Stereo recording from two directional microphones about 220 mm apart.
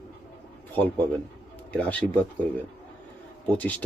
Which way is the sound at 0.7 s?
10° left (ahead or behind).